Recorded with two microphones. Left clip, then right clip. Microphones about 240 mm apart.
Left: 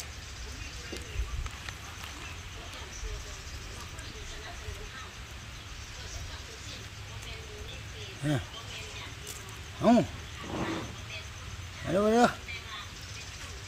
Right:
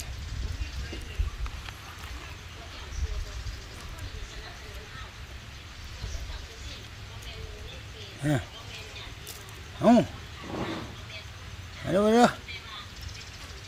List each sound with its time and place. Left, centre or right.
8.2 s speech: centre
9.8 s speech: centre
10.5 s vehicle: right
11.9 s a sound: right